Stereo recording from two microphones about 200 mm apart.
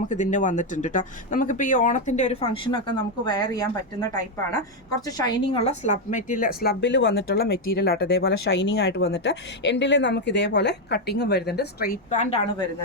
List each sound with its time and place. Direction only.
0.1 s a woman's voice: 40° left (ahead or behind)
12.1 s speech: 35° left (ahead or behind)